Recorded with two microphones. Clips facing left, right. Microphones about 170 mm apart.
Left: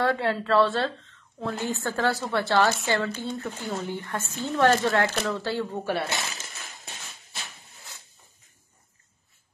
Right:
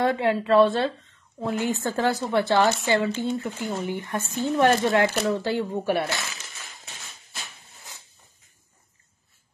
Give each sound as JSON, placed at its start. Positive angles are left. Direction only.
{"t": 0.0, "sound": "a woman's voice", "side_deg": -15}
{"t": 6.0, "sound": "speech", "side_deg": 25}